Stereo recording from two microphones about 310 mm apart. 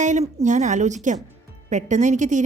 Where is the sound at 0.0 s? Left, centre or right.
Right.